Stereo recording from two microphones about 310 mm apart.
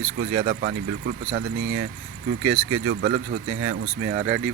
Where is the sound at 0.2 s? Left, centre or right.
Right.